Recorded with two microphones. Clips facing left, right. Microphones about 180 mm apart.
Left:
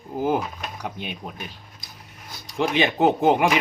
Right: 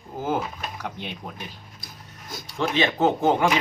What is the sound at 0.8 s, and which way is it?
Speech, 15° left (ahead or behind).